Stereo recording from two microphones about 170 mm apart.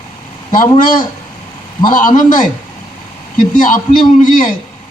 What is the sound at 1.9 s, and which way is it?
Speech, 50° left (ahead or behind).